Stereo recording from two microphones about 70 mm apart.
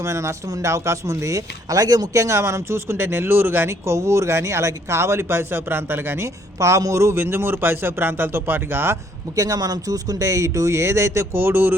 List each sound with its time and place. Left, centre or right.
0.0 s speech: right
9.3 s speech: right